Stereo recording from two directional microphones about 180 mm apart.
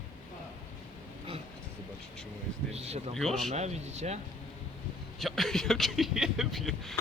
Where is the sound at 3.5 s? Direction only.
40° right (ahead or behind).